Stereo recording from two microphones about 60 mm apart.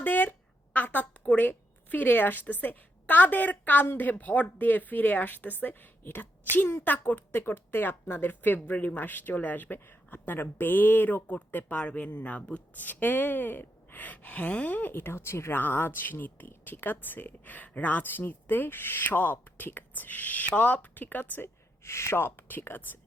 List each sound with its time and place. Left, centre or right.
0.0 s a sound: left
1.3 s a woman's voice: left
21.4 s speech: left